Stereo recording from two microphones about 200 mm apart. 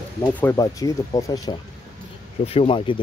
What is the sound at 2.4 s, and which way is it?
Speech, 30° left (ahead or behind).